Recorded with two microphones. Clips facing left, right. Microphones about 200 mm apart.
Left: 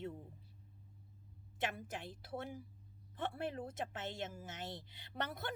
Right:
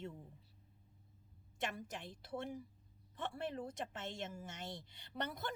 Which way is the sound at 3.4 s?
55° left (ahead or behind).